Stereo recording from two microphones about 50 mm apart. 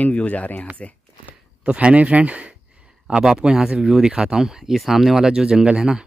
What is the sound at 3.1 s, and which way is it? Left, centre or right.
Speech, centre.